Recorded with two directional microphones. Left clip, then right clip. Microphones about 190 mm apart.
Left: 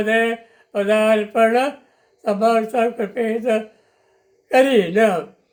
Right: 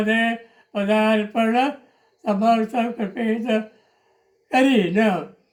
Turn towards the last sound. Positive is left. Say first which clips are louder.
# left 4 dB
turn(degrees=25)  # may be behind; listen again after turning